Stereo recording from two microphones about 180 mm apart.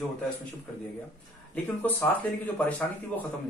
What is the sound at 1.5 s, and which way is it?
Speech, 10° left (ahead or behind).